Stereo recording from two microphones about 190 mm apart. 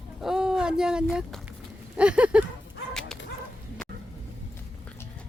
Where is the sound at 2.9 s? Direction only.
5° left (ahead or behind).